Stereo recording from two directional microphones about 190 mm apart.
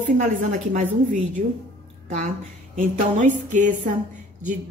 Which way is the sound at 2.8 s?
40° right (ahead or behind).